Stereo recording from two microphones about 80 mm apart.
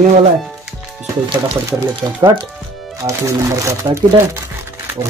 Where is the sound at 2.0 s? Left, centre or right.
Right.